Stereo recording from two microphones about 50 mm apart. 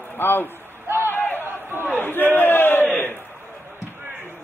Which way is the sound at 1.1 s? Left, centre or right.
Left.